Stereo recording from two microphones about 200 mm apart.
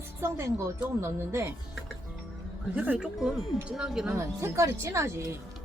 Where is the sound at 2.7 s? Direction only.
5° right (ahead or behind).